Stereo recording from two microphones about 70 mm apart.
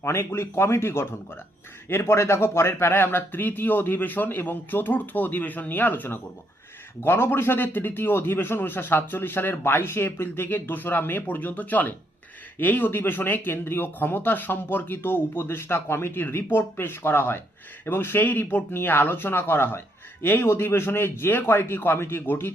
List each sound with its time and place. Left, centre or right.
0.0 s speech: left